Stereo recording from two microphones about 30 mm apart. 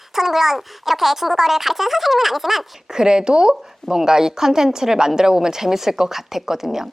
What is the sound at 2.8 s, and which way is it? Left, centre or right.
Speech, right.